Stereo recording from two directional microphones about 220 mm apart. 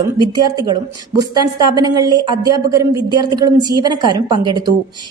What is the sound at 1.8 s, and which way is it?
A woman's voice, 15° right (ahead or behind).